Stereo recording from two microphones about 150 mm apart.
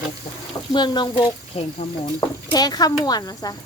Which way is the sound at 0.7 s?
30° left (ahead or behind).